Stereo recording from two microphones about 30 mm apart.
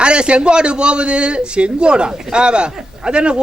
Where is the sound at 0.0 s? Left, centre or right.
Right.